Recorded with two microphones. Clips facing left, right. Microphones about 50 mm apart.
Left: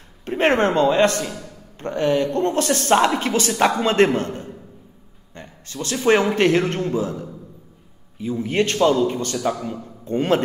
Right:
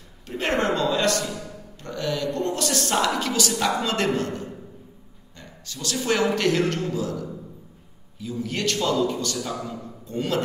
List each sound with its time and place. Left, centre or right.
0.2 s a woman's voice: left